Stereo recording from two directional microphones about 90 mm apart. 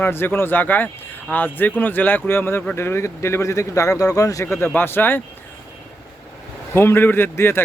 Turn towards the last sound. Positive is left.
turn(degrees=25)  # may be behind; listen again after turning